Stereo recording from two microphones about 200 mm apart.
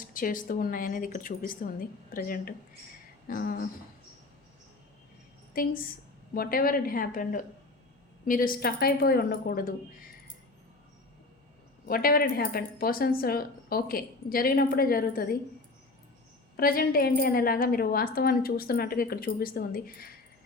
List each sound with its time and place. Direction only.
0.0 s speech: 45° left (ahead or behind)
5.5 s speech: 45° left (ahead or behind)
11.9 s speech: 45° left (ahead or behind)
16.6 s speech: 45° left (ahead or behind)